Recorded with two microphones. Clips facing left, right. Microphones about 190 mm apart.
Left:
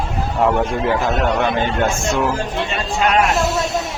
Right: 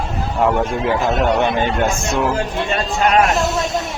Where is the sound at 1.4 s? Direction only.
15° right (ahead or behind).